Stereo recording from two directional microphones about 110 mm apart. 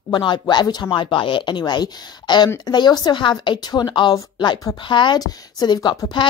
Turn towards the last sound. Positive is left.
turn(degrees=45)  # may be behind; listen again after turning